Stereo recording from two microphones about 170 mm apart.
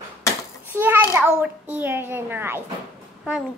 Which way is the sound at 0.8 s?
10° right (ahead or behind).